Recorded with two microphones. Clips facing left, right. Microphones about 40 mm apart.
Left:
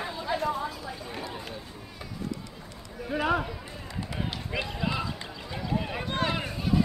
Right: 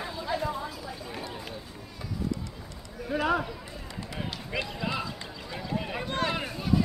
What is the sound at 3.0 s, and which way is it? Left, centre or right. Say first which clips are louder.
Speech: even; centre.